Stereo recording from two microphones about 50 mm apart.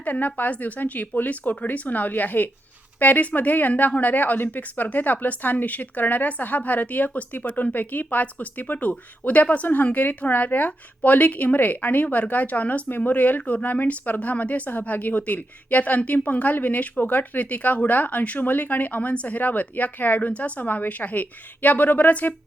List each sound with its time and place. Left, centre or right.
0.0 s speech: left